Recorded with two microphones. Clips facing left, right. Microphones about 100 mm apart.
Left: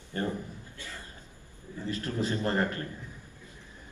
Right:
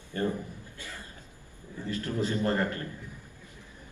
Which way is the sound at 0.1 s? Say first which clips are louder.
Right 2 dB; 20° left (ahead or behind).